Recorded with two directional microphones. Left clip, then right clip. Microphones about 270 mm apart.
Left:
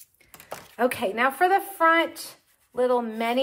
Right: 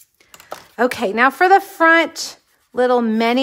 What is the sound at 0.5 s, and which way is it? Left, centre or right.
Speech, right.